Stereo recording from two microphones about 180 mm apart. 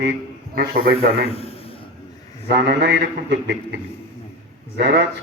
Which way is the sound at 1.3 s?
35° left (ahead or behind).